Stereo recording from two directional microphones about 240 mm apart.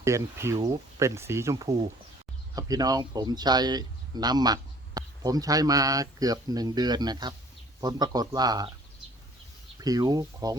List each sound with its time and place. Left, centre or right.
0.0 s speech: centre
9.7 s speech: centre